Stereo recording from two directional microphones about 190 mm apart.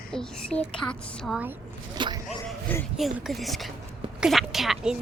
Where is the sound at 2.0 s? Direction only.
25° right (ahead or behind).